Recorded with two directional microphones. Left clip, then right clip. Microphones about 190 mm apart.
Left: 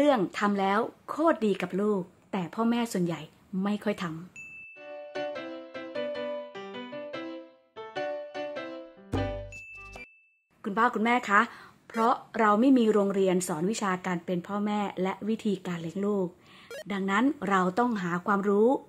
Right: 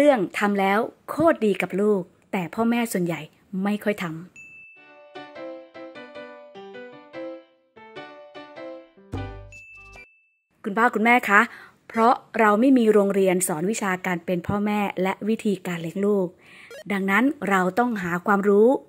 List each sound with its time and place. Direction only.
0.0 s a woman's voice: 20° right (ahead or behind)
5.7 s music: 5° left (ahead or behind)
7.8 s music: 5° left (ahead or behind)
9.1 s ding: centre (ahead or behind)
10.6 s a woman's voice: 25° right (ahead or behind)